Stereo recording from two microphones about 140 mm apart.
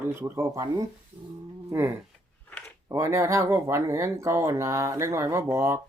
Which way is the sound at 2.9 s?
20° right (ahead or behind).